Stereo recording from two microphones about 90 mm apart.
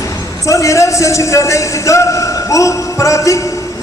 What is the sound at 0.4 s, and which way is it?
A man's voice, 35° left (ahead or behind).